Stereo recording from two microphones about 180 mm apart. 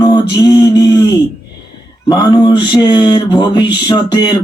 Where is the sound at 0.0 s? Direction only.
25° left (ahead or behind).